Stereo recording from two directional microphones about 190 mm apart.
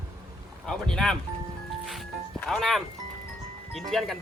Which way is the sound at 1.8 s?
Centre (ahead or behind).